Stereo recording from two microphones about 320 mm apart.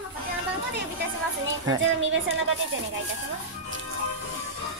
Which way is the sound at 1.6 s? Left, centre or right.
Right.